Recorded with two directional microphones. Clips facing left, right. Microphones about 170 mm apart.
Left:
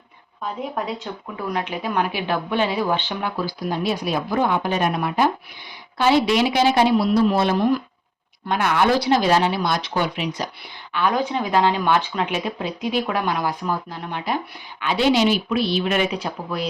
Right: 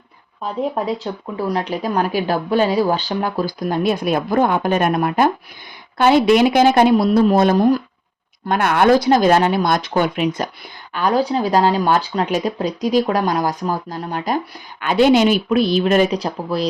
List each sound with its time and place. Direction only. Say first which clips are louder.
0.9 s speech: right 6 dB; 35° right (ahead or behind); by 10.5 s 50° right (ahead or behind)
10.9 s speech: right 4 dB; 35° right (ahead or behind)